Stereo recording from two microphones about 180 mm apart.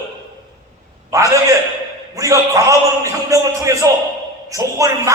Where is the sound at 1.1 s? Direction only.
20° right (ahead or behind).